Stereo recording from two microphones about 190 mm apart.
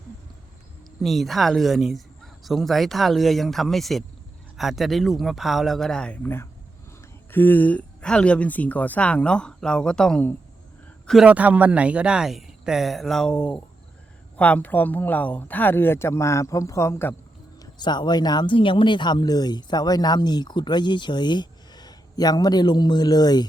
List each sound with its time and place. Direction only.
1.0 s speech: centre (ahead or behind); by 23.5 s 20° left (ahead or behind)